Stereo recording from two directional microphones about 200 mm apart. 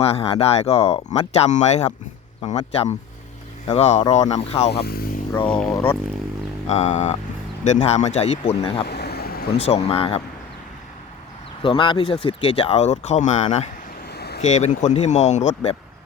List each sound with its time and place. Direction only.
0.0 s speech: 30° left (ahead or behind)
3.7 s speech: 35° left (ahead or behind)
4.7 s speech: 50° left (ahead or behind)
5.5 s speech: 5° left (ahead or behind)
6.7 s speech: 35° left (ahead or behind)
8.9 s vehicle: 55° left (ahead or behind)
9.6 s speech: 30° left (ahead or behind)
11.6 s speech: 25° left (ahead or behind)
14.1 s vehicle: 55° left (ahead or behind)
14.4 s speech: 35° left (ahead or behind)